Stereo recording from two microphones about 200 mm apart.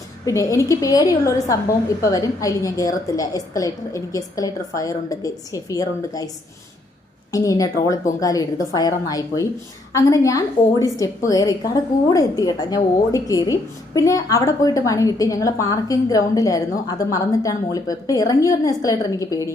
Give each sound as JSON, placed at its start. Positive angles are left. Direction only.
{"t": 0.3, "sound": "a woman's voice", "side_deg": 15}
{"t": 7.3, "sound": "a woman's voice", "side_deg": 15}